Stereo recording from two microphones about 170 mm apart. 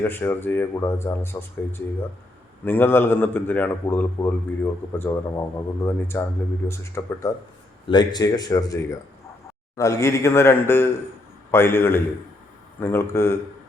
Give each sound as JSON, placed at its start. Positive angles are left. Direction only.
{"t": 0.0, "sound": "a man's voice", "side_deg": 10}